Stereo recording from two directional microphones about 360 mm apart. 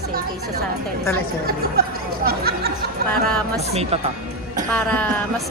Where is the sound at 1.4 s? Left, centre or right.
Right.